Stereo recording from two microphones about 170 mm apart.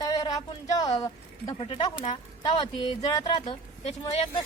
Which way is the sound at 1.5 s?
35° left (ahead or behind).